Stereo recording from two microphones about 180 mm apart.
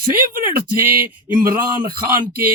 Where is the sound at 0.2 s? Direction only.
50° right (ahead or behind).